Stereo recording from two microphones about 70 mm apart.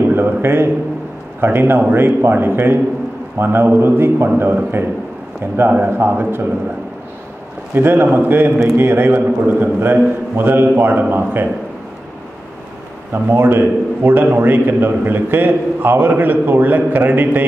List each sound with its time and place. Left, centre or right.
0.1 s a man's voice: right
5.4 s a man's voice: right
7.7 s a man's voice: right
13.1 s a man's voice: right